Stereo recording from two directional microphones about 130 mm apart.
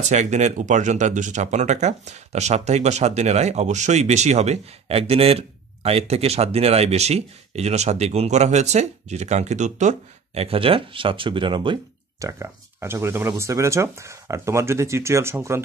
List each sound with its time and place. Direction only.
0.0 s speech: 65° right (ahead or behind); by 11.8 s 40° right (ahead or behind)
12.2 s speech: 20° right (ahead or behind)